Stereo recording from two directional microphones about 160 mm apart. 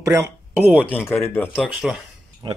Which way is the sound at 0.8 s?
10° left (ahead or behind).